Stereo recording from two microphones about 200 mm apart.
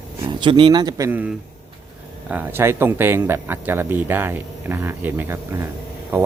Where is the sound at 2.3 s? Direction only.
10° right (ahead or behind).